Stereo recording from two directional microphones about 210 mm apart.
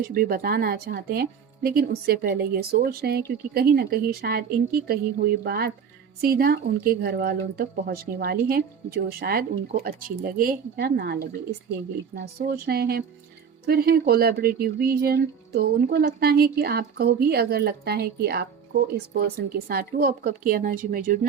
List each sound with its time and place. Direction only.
0.1 s speech: 45° right (ahead or behind)
12.5 s speech: 50° right (ahead or behind)